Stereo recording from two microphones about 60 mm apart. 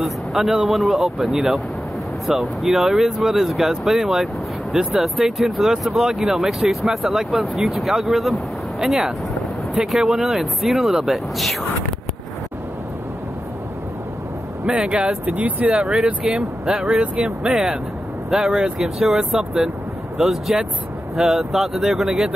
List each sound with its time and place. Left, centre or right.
0.0 s speech: centre
14.8 s speech: centre
15.2 s speech: right
15.7 s speech: centre